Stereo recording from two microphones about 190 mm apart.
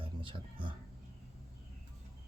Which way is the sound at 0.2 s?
25° right (ahead or behind).